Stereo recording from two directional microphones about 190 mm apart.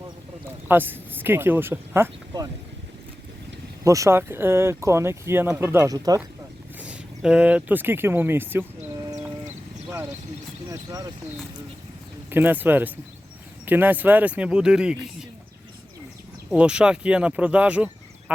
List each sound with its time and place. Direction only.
0.7 s speech: 10° right (ahead or behind)
3.8 s speech: 15° right (ahead or behind)
6.7 s speech: 5° right (ahead or behind)
10.7 s speech: 20° right (ahead or behind)
12.3 s speech: 10° right (ahead or behind)
16.5 s speech: 5° right (ahead or behind)